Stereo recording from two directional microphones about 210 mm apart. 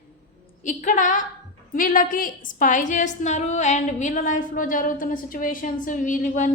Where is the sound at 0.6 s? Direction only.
35° left (ahead or behind).